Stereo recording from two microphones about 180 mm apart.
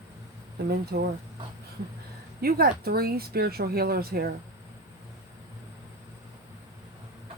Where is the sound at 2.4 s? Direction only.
55° right (ahead or behind).